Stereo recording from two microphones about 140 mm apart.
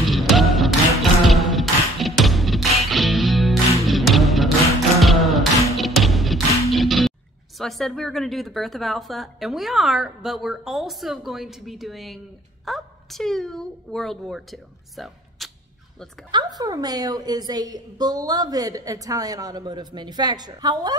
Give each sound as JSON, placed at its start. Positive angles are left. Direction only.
{"t": 0.0, "sound": "music", "side_deg": 0}
{"t": 6.7, "sound": "a woman's voice", "side_deg": 0}
{"t": 16.3, "sound": "a woman's voice", "side_deg": -30}